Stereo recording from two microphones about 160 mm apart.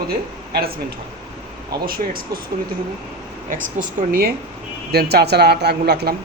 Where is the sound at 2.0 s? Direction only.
60° right (ahead or behind).